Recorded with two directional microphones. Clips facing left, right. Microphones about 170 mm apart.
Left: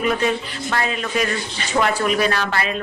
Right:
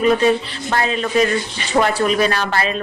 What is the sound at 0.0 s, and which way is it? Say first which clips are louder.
Speech: right 5 dB; 35° right (ahead or behind).